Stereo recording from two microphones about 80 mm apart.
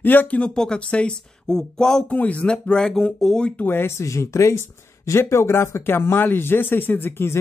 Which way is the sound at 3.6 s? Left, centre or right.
Left.